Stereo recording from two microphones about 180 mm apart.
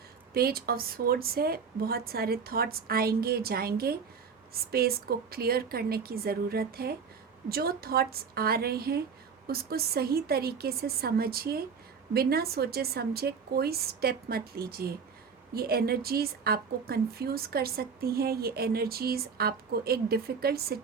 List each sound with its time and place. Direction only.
0.3 s a woman's voice: 55° right (ahead or behind)